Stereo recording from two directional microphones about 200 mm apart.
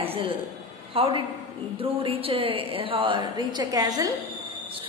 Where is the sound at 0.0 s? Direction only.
30° right (ahead or behind).